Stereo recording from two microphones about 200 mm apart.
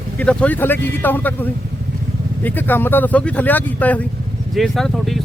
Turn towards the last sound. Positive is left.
turn(degrees=0)  # may be behind; listen again after turning